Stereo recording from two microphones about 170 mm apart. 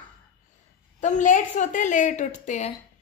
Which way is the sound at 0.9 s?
45° left (ahead or behind).